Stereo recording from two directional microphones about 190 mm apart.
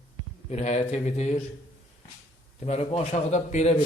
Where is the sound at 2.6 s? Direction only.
35° left (ahead or behind).